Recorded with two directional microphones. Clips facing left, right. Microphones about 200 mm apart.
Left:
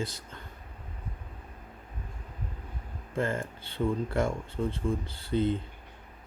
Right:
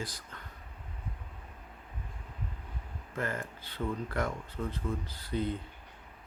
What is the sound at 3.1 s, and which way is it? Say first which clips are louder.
Speech: left 5 dB; 25° left (ahead or behind).